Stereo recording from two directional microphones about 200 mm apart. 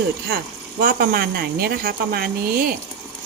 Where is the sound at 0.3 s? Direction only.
50° right (ahead or behind).